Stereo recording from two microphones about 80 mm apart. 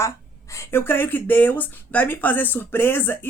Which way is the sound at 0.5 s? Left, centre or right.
Left.